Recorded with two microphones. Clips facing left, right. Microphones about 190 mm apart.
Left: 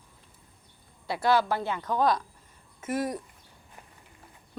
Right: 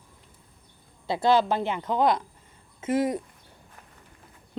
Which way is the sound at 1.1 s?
20° right (ahead or behind).